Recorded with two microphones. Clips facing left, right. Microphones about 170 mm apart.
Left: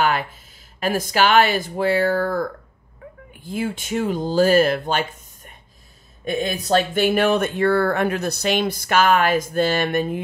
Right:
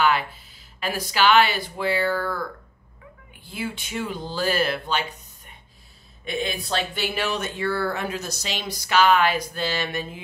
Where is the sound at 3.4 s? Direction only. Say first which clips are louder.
Left 7 dB; 45° left (ahead or behind).